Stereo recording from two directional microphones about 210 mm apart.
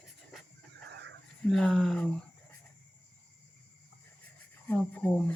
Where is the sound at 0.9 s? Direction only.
55° right (ahead or behind).